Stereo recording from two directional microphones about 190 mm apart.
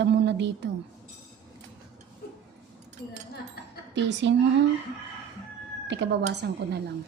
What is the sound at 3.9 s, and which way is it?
Speech, 70° right (ahead or behind).